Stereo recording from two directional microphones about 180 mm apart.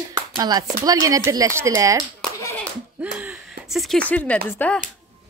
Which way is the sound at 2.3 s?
15° left (ahead or behind).